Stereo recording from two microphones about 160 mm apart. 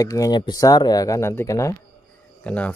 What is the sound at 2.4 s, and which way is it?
Speech, 10° left (ahead or behind).